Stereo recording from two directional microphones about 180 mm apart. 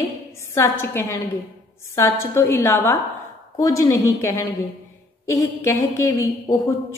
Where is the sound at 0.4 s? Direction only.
15° left (ahead or behind).